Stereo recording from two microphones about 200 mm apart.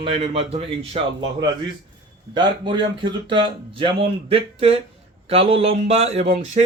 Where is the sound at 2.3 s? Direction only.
25° right (ahead or behind).